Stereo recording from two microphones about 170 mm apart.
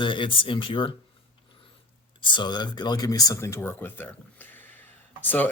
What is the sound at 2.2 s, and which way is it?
Speech, 25° left (ahead or behind).